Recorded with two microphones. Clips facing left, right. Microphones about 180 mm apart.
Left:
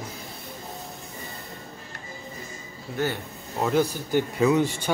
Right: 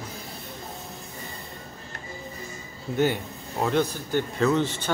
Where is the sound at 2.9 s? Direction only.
20° right (ahead or behind).